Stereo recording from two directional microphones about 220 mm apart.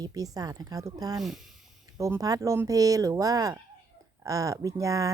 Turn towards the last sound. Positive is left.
turn(degrees=-15)  # may be behind; listen again after turning